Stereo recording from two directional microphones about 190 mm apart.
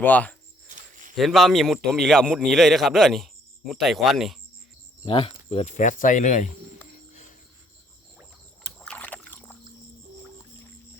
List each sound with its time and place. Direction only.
0.0 s speech: 10° left (ahead or behind)
0.7 s a sound: 45° right (ahead or behind)
1.1 s a man's voice: centre (ahead or behind)
5.0 s speech: 30° left (ahead or behind)
8.8 s rowboat: 5° left (ahead or behind)